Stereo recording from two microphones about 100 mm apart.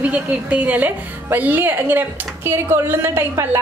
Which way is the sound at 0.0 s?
15° right (ahead or behind).